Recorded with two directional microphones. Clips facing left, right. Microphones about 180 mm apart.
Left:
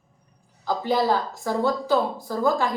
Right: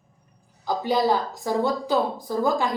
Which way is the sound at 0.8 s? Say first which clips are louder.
Even; 15° right (ahead or behind).